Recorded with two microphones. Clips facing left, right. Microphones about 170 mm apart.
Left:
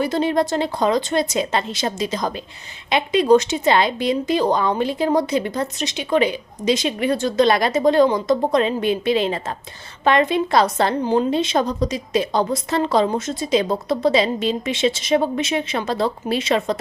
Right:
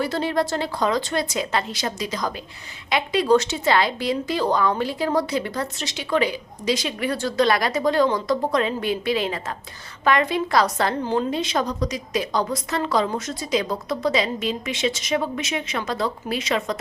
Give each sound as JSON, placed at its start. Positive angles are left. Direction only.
{"t": 0.0, "sound": "speech", "side_deg": 20}